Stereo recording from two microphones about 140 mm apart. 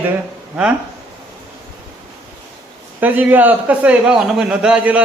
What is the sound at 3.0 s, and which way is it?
A man's voice, 10° right (ahead or behind).